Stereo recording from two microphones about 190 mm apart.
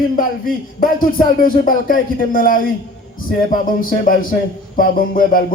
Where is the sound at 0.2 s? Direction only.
45° left (ahead or behind).